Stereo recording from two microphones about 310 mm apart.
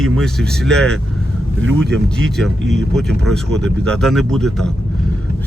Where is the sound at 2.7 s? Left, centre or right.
Centre.